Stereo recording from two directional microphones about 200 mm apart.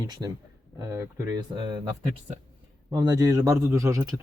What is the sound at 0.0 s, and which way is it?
Speech, 20° right (ahead or behind).